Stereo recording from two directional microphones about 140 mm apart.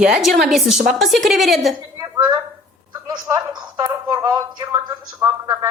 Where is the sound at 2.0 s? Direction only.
25° right (ahead or behind).